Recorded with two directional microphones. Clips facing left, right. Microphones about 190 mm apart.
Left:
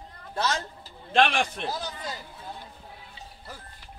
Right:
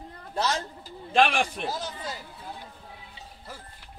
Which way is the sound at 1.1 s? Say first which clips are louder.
Even; 5° right (ahead or behind).